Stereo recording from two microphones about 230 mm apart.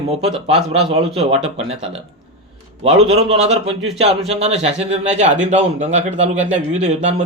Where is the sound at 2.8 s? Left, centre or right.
Right.